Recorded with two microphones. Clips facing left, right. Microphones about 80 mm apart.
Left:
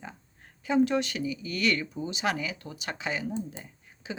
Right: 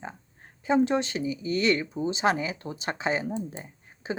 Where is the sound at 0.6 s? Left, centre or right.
Right.